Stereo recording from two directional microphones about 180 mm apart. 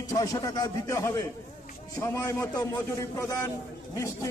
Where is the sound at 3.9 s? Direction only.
15° left (ahead or behind).